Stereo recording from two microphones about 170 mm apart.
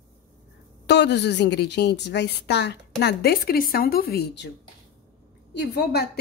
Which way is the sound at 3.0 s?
70° left (ahead or behind).